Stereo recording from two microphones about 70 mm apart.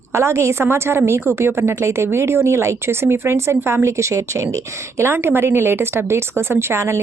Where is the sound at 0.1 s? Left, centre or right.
Right.